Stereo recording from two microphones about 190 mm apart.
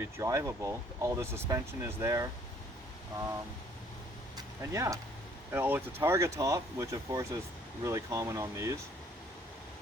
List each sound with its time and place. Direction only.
0.0 s speech: 15° right (ahead or behind)
4.4 s a sound: 15° right (ahead or behind)
5.5 s speech: 10° right (ahead or behind)